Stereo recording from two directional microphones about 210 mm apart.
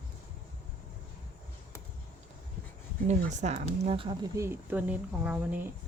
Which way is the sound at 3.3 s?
35° right (ahead or behind).